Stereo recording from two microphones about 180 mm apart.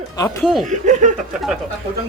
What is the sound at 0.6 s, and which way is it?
Speech, 40° right (ahead or behind).